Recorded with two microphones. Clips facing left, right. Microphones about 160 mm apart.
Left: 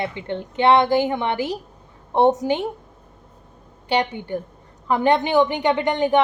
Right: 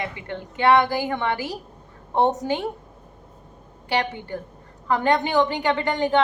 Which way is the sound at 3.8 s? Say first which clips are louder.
Left 3 dB; 20° left (ahead or behind).